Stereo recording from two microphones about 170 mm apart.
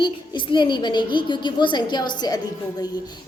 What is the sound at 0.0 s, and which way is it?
A woman's voice, 30° left (ahead or behind).